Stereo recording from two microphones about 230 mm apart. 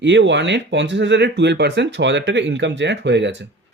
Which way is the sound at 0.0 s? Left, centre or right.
Right.